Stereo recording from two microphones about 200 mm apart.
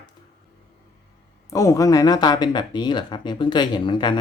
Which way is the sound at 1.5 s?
15° left (ahead or behind).